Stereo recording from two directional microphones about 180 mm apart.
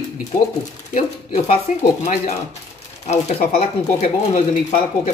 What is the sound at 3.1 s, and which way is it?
Speech, 40° left (ahead or behind).